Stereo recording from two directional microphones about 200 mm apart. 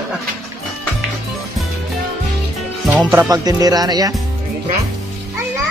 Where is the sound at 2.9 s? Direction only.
5° right (ahead or behind).